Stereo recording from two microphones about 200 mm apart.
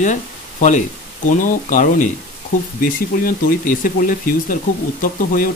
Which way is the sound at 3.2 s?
45° left (ahead or behind).